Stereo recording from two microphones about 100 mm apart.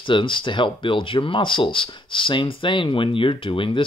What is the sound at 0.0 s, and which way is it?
Speech, 55° left (ahead or behind).